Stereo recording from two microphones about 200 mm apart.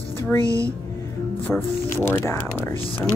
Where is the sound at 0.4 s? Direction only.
15° right (ahead or behind).